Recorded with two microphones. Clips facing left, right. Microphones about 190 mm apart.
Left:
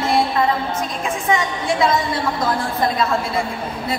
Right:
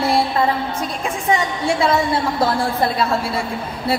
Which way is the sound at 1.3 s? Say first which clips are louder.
Right 2 dB; 30° right (ahead or behind).